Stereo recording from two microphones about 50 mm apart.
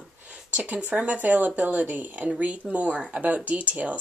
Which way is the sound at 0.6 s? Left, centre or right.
Right.